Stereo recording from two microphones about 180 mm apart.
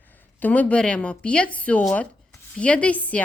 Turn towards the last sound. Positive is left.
turn(degrees=10)  # may be behind; listen again after turning